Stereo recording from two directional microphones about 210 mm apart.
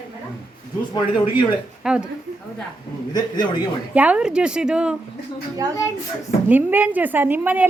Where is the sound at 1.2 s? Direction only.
25° left (ahead or behind).